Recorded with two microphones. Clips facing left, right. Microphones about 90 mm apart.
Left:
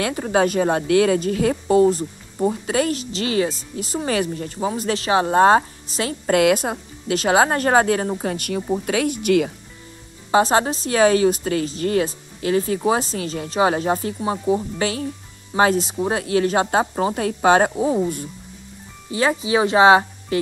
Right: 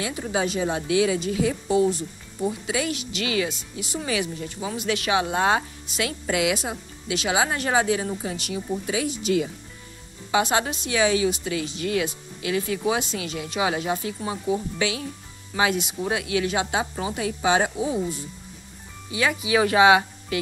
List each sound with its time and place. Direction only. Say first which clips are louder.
0.0 s speech: left 7 dB; 50° left (ahead or behind)
6.3 s speech: left 8 dB; 50° left (ahead or behind)
10.3 s a woman's voice: left 6 dB; 35° left (ahead or behind)
19.0 s a woman's voice: left 4 dB; 35° left (ahead or behind)